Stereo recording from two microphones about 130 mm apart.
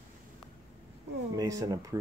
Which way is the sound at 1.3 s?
25° right (ahead or behind).